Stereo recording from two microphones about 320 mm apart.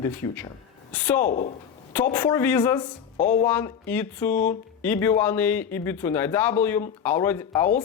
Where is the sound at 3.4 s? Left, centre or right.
Centre.